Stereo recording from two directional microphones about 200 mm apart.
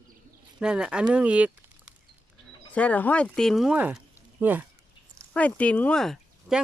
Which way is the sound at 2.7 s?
5° left (ahead or behind).